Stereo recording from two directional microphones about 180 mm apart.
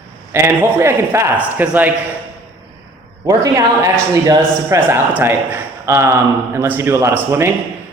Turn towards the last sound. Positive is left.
turn(degrees=-15)  # may be behind; listen again after turning